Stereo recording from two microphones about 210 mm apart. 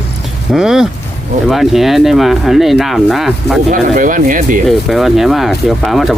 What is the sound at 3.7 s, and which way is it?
Speech, 40° right (ahead or behind).